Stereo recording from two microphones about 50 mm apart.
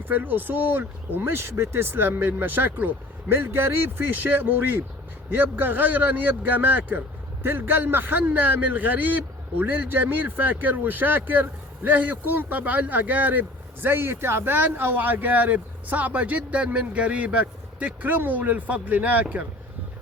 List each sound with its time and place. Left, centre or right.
0.0 s a man's voice: right
13.8 s a man's voice: right
18.0 s a man's voice: right